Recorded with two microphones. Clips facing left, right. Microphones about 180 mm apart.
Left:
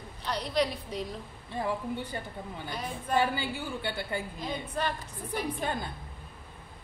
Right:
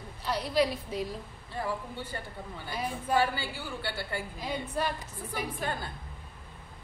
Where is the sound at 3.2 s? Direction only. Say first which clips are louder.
Left 1 dB; 20° left (ahead or behind).